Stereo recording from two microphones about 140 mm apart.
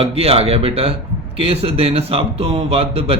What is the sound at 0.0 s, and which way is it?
A man's voice, 45° right (ahead or behind).